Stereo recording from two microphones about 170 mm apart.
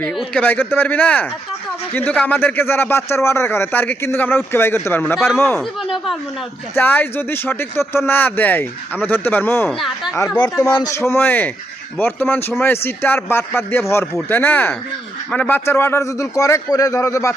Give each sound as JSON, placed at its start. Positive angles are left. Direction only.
{"t": 0.0, "sound": "speech", "side_deg": 0}
{"t": 5.8, "sound": "a sound", "side_deg": 0}
{"t": 6.7, "sound": "speech", "side_deg": 10}
{"t": 9.6, "sound": "speech", "side_deg": 0}
{"t": 10.6, "sound": "speech", "side_deg": 15}